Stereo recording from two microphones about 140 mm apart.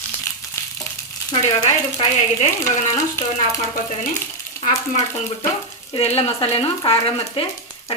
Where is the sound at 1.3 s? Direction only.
40° left (ahead or behind).